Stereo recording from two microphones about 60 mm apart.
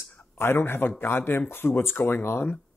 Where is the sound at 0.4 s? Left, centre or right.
Left.